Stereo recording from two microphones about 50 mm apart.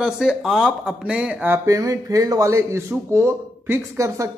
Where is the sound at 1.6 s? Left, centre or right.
Right.